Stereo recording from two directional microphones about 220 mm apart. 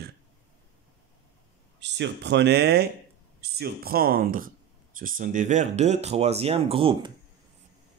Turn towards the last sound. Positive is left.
turn(degrees=-25)  # may be behind; listen again after turning